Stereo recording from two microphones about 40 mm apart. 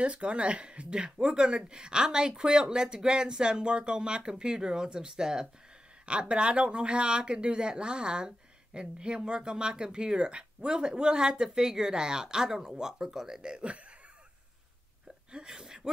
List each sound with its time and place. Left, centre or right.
0.0 s speech: right; by 13.4 s centre
13.4 s speech: right
15.3 s speech: centre